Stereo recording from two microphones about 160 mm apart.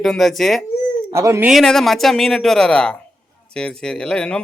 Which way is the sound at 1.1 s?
15° right (ahead or behind).